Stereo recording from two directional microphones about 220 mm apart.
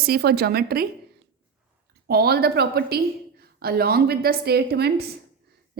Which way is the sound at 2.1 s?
45° right (ahead or behind).